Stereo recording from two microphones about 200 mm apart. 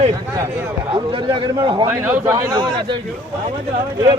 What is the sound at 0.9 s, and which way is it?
A man's voice, 25° right (ahead or behind).